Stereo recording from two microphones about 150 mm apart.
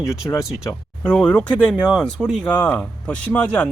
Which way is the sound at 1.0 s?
5° left (ahead or behind).